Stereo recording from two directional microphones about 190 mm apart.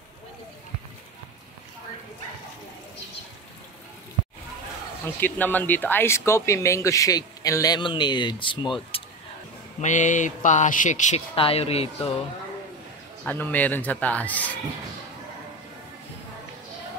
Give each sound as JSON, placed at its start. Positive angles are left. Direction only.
{"t": 5.2, "sound": "speech", "side_deg": 10}
{"t": 9.8, "sound": "speech", "side_deg": 40}
{"t": 13.2, "sound": "speech", "side_deg": 10}